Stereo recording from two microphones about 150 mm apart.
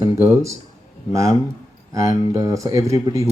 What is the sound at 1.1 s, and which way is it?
Speech, 20° right (ahead or behind).